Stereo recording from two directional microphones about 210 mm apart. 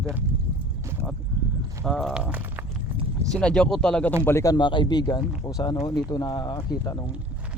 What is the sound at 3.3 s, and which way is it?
Speech, 5° left (ahead or behind).